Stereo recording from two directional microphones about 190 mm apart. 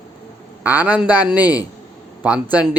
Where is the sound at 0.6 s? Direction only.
10° right (ahead or behind).